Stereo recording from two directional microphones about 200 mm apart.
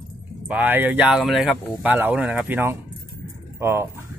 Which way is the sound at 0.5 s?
10° right (ahead or behind).